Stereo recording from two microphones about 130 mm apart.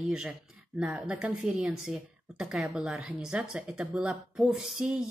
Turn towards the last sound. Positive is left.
turn(degrees=-5)  # may be behind; listen again after turning